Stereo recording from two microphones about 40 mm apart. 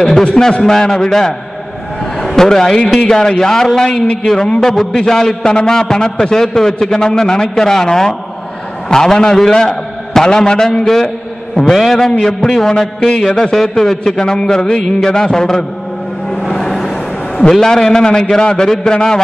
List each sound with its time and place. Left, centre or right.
0.2 s a man's voice: centre
2.1 s a sound: centre
3.1 s a man's voice: centre
11.7 s a man's voice: centre
16.9 s a man's voice: centre